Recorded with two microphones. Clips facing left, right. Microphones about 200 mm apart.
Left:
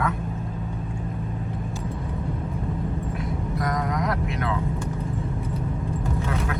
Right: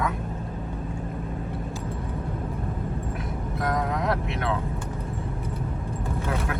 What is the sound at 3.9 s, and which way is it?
Speech, 30° right (ahead or behind).